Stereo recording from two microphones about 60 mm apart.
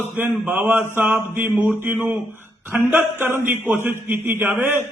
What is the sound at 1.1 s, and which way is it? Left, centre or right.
Speech, right.